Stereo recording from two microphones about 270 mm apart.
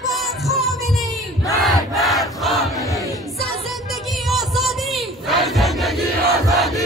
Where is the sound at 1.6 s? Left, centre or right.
Centre.